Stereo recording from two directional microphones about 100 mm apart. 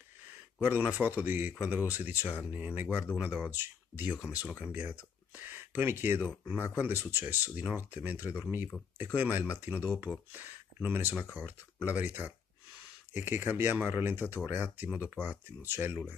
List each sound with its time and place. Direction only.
0.6 s speech: 20° right (ahead or behind)